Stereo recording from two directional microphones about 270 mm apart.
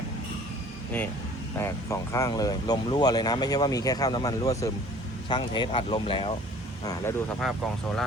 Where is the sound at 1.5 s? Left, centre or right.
Centre.